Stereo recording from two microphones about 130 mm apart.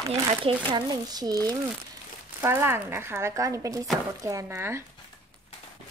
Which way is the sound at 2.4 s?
15° right (ahead or behind).